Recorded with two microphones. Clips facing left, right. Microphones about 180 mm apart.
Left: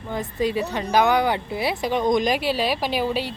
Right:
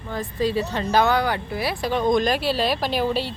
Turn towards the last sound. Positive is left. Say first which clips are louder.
# right 1 dB
turn(degrees=10)  # may be behind; listen again after turning